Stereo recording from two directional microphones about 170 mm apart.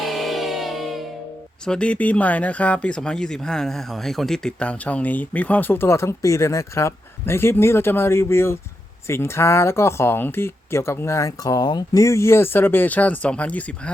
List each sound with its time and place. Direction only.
0.0 s music: centre (ahead or behind)
1.6 s speech: 5° left (ahead or behind)